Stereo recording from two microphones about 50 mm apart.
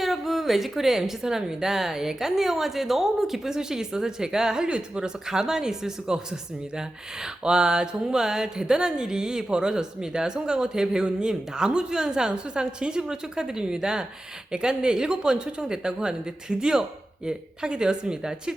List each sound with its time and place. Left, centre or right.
0.0 s a woman's voice: centre